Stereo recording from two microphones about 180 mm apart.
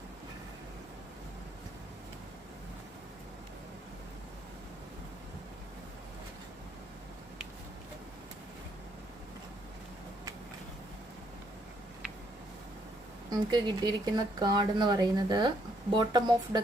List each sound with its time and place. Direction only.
13.5 s speech: 20° right (ahead or behind)